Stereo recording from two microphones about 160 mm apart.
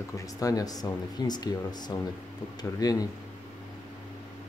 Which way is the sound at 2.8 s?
25° left (ahead or behind).